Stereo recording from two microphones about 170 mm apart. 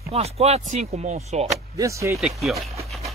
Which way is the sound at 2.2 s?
Centre (ahead or behind).